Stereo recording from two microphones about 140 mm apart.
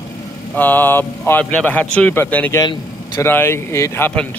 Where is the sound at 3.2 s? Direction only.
15° left (ahead or behind).